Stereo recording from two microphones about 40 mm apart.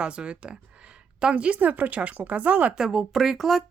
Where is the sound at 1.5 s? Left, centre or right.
Right.